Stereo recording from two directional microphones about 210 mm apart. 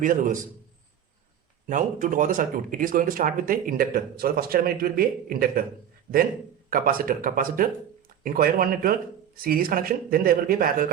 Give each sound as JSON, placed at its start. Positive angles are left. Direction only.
{"t": 0.0, "sound": "speech", "side_deg": -40}
{"t": 1.6, "sound": "speech", "side_deg": -40}
{"t": 6.7, "sound": "speech", "side_deg": -40}